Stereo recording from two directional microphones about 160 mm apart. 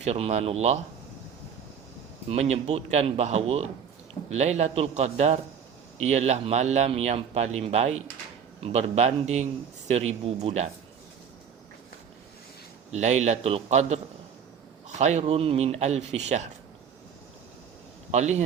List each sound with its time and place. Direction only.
0.0 s speech: 45° right (ahead or behind)
2.3 s speech: 45° right (ahead or behind)
12.9 s speech: 45° right (ahead or behind)
18.1 s speech: 45° right (ahead or behind)